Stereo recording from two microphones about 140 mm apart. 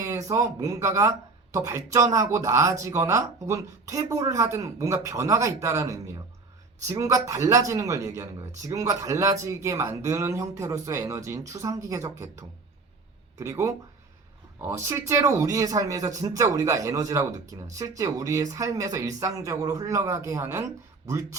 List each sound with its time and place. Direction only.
0.0 s speech: 20° right (ahead or behind)
14.8 s speech: 20° right (ahead or behind)